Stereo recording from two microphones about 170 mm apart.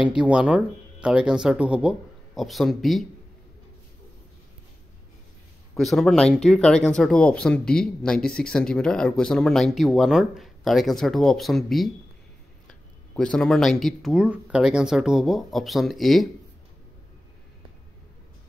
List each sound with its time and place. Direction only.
0.0 s speech: 5° right (ahead or behind)
5.8 s speech: centre (ahead or behind)